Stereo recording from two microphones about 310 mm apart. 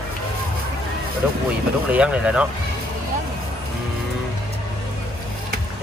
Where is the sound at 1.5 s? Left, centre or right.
Centre.